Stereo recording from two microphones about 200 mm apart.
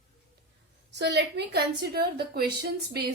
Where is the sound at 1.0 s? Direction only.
60° right (ahead or behind).